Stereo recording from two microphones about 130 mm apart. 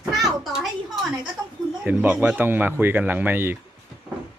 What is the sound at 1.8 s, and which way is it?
Speech, 10° right (ahead or behind).